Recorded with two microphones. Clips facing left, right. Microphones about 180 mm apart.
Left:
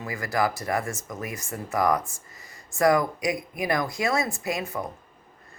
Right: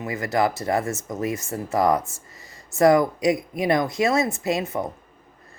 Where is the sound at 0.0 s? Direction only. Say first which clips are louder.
Right 4 dB; 25° right (ahead or behind).